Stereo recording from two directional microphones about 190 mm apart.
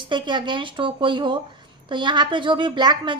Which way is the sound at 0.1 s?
25° right (ahead or behind).